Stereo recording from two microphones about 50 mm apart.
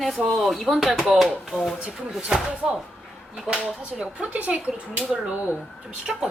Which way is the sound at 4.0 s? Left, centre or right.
Right.